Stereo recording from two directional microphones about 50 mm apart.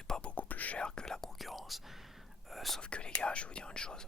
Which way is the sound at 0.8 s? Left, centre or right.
Centre.